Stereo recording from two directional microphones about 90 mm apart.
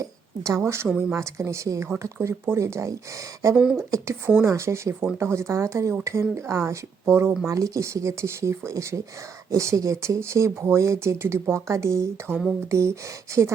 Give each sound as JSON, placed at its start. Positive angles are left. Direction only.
{"t": 0.0, "sound": "speech", "side_deg": -35}
{"t": 3.5, "sound": "speech", "side_deg": -10}
{"t": 3.8, "sound": "speech", "side_deg": -30}